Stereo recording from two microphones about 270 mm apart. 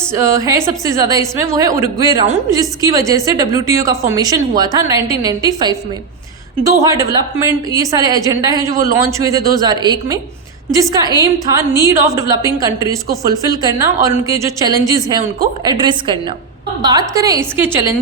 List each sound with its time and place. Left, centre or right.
0.2 s a woman's voice: centre
11.2 s a woman's voice: centre